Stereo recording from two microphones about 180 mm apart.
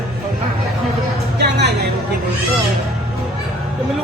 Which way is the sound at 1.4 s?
70° right (ahead or behind).